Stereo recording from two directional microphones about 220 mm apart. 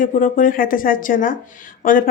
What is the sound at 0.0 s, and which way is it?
Speech, 35° left (ahead or behind).